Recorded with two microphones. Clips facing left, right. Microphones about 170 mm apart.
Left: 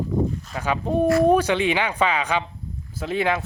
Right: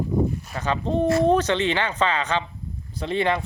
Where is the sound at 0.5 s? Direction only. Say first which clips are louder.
Left 2 dB; 10° left (ahead or behind).